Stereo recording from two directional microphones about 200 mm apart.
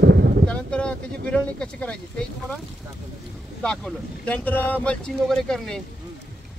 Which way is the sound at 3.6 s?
5° left (ahead or behind).